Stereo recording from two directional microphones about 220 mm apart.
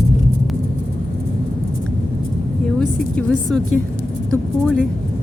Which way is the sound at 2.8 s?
5° left (ahead or behind).